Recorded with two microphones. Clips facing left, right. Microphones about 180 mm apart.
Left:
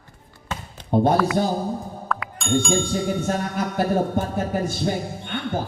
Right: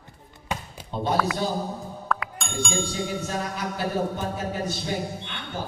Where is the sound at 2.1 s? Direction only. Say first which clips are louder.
Left 7 dB; centre (ahead or behind).